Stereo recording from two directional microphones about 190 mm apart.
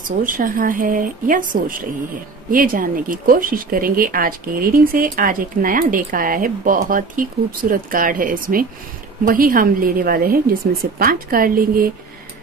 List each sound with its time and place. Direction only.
0.2 s speech: 45° right (ahead or behind)